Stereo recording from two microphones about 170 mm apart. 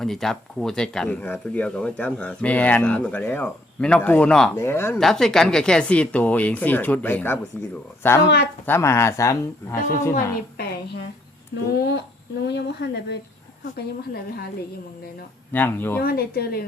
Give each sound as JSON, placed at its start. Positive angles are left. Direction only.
{"t": 0.0, "sound": "speech", "side_deg": 0}
{"t": 4.9, "sound": "speech", "side_deg": 0}
{"t": 11.5, "sound": "speech", "side_deg": 70}
{"t": 12.5, "sound": "speech", "side_deg": 80}
{"t": 13.7, "sound": "speech", "side_deg": 65}
{"t": 15.5, "sound": "speech", "side_deg": 10}
{"t": 16.0, "sound": "speech", "side_deg": 65}